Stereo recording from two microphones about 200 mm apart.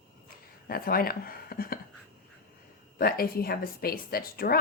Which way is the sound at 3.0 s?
50° left (ahead or behind).